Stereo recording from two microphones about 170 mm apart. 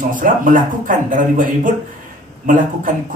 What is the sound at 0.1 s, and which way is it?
A man's voice, 55° right (ahead or behind).